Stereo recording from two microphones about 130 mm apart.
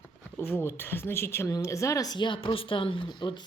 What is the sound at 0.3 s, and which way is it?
Speech, 15° left (ahead or behind).